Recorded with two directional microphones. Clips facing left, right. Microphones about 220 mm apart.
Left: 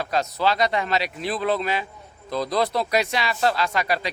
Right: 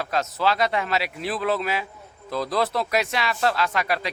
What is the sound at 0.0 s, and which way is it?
Speech, centre (ahead or behind).